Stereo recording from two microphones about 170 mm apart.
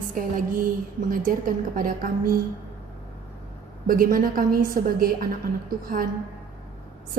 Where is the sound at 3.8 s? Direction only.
55° right (ahead or behind).